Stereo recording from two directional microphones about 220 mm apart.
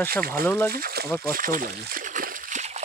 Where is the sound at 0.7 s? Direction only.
45° right (ahead or behind).